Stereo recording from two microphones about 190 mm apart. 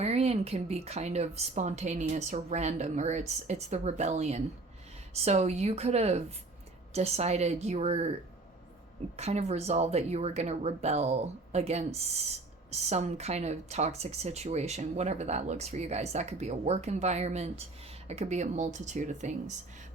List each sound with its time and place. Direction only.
0.0 s speech: 35° right (ahead or behind)
9.1 s speech: 35° right (ahead or behind)